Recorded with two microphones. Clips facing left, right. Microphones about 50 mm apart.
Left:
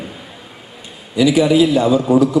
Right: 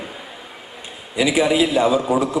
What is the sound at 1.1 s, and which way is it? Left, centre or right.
Speech, right.